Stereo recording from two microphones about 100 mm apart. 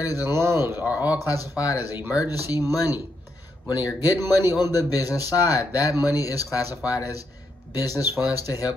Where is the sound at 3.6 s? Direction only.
40° left (ahead or behind).